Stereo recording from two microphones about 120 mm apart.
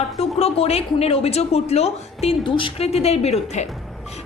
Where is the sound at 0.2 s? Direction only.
55° left (ahead or behind).